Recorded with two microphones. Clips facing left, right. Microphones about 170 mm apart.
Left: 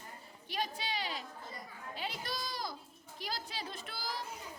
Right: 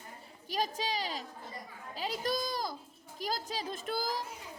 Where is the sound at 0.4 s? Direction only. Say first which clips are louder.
Right 5 dB; 40° right (ahead or behind).